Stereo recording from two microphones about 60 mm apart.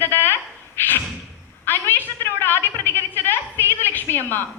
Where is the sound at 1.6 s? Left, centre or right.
Left.